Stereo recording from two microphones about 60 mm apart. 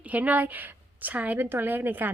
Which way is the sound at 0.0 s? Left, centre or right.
Right.